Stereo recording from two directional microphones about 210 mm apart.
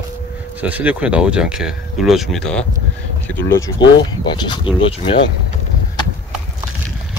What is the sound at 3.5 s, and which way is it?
Speech, 20° left (ahead or behind).